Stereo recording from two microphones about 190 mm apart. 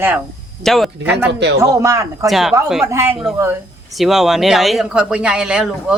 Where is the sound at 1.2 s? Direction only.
65° right (ahead or behind).